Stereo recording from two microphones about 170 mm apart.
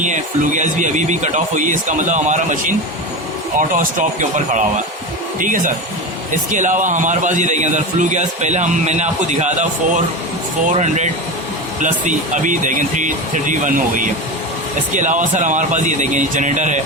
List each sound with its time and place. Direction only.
0.0 s a man's voice: 45° right (ahead or behind)